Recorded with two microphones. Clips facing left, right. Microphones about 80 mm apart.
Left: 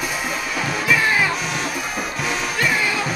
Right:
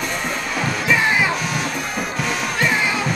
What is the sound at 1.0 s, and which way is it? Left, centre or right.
Music, centre.